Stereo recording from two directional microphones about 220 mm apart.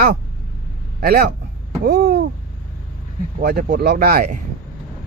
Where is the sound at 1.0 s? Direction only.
45° right (ahead or behind).